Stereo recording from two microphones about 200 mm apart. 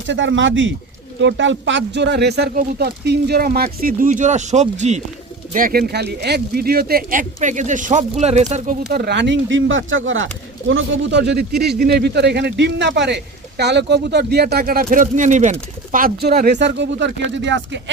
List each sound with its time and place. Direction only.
0.1 s speech: 65° right (ahead or behind); by 5.0 s 35° right (ahead or behind)
5.5 s speech: 45° right (ahead or behind)
8.9 s speech: 55° right (ahead or behind)